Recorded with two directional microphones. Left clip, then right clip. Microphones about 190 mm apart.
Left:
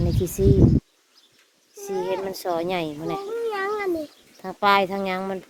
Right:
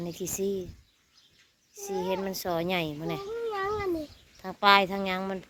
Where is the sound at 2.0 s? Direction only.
Centre (ahead or behind).